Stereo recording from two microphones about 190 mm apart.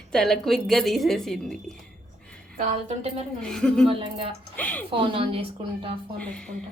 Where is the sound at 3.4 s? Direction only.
5° left (ahead or behind).